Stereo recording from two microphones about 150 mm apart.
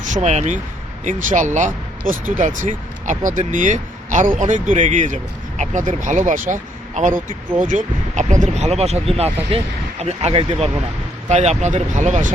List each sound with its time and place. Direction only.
0.1 s speech: 50° right (ahead or behind)